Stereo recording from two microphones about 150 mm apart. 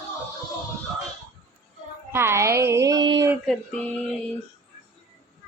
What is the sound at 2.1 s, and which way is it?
Music, 15° right (ahead or behind).